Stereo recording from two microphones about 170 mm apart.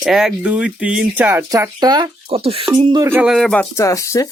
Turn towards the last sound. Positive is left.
turn(degrees=20)  # may be behind; listen again after turning